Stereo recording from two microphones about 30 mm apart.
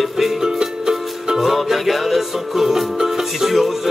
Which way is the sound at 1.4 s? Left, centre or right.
Centre.